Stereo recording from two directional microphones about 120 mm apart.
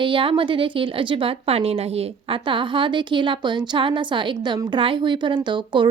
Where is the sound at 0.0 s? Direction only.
45° right (ahead or behind).